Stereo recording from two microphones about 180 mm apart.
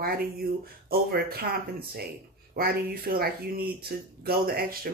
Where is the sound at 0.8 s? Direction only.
55° right (ahead or behind).